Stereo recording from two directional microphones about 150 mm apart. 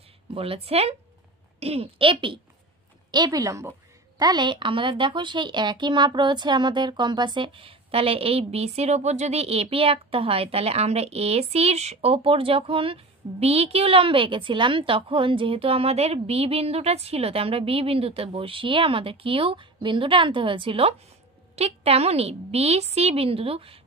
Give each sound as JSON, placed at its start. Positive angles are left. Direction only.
{"t": 0.3, "sound": "a woman's voice", "side_deg": -40}